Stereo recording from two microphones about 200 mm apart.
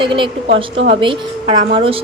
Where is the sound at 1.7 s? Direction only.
30° right (ahead or behind).